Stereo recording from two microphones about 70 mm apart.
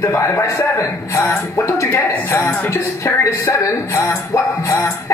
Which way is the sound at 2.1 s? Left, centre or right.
Left.